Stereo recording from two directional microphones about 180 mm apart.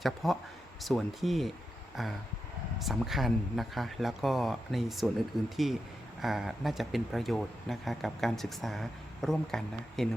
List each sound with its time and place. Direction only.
0.0 s speech: centre (ahead or behind)